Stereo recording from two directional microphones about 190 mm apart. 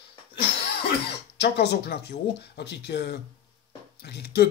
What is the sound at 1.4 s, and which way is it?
Speech, 60° left (ahead or behind).